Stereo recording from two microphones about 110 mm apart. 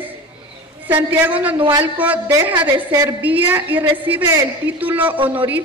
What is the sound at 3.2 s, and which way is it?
A woman's voice, 15° right (ahead or behind).